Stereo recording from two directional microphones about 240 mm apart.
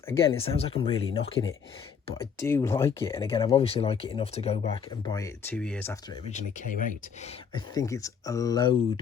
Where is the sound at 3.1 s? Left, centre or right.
Left.